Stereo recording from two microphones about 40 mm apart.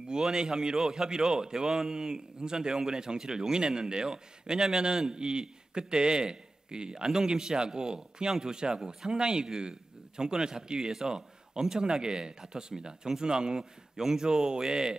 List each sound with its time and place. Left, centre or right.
0.1 s a man's voice: centre